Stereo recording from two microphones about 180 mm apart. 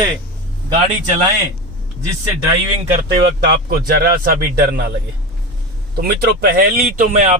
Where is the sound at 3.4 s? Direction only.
60° right (ahead or behind).